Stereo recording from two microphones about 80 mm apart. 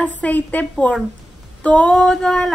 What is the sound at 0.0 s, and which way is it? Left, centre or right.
A woman's voice, centre.